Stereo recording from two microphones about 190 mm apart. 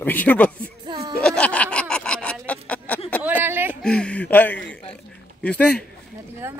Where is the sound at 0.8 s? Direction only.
25° right (ahead or behind).